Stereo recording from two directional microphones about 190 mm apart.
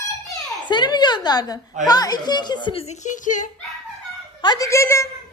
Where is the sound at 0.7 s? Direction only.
25° left (ahead or behind); by 3.4 s 40° left (ahead or behind).